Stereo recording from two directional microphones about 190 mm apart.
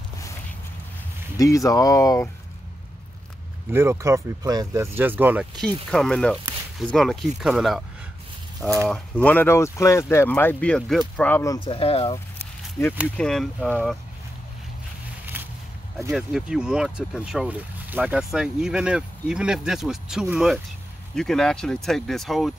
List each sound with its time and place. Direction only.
1.4 s speech: 15° left (ahead or behind)
3.7 s speech: 15° right (ahead or behind)
5.9 s speech: 5° left (ahead or behind); by 12.2 s 30° left (ahead or behind)
12.8 s speech: 10° left (ahead or behind)
15.3 s a sound: 10° right (ahead or behind)
16.1 s speech: centre (ahead or behind)